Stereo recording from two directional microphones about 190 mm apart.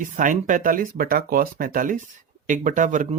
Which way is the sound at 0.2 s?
45° right (ahead or behind).